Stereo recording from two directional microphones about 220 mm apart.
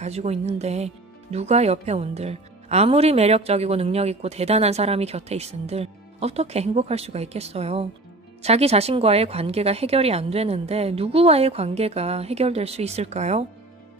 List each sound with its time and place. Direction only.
0.0 s speech: 30° right (ahead or behind)